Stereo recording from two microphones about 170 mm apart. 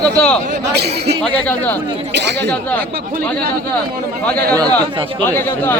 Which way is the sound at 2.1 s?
90° right.